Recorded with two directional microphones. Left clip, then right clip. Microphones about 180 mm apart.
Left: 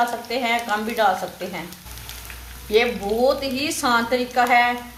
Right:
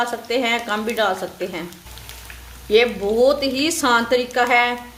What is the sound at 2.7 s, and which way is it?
A woman's voice, 60° right (ahead or behind).